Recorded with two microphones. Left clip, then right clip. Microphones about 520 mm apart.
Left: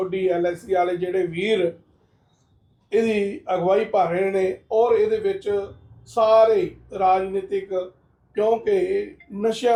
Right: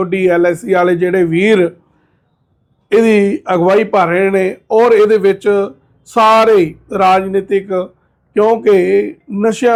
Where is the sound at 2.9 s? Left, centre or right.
Right.